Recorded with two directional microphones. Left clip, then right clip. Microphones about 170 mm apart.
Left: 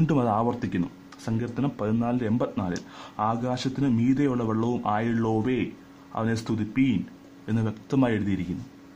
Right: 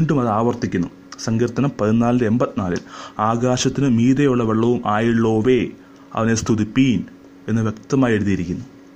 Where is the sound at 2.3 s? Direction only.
15° right (ahead or behind).